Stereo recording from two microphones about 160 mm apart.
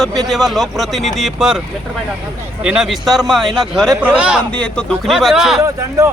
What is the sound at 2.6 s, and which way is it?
A man's voice, 5° right (ahead or behind).